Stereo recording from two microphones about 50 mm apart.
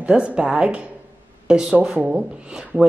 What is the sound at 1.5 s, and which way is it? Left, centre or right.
Speech, centre.